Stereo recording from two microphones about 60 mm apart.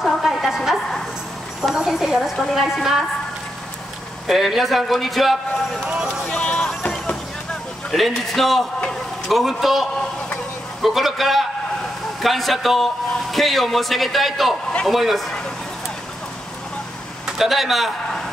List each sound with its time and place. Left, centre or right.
0.0 s a man's voice: centre
1.8 s a man's voice: centre
4.3 s a man's voice: centre
6.0 s a sound: centre
7.9 s a man's voice: centre
17.3 s a man's voice: centre